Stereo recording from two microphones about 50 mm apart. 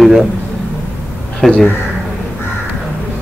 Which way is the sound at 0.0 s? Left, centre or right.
Centre.